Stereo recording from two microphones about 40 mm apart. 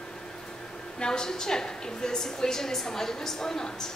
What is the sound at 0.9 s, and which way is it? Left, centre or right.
A woman's voice, centre.